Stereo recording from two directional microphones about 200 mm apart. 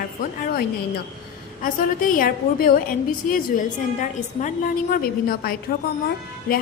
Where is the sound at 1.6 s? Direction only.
45° left (ahead or behind).